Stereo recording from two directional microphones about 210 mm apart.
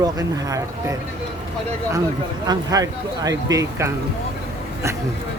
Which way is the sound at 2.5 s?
15° right (ahead or behind).